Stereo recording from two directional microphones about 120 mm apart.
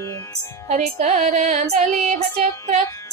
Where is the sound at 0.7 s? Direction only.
70° right (ahead or behind).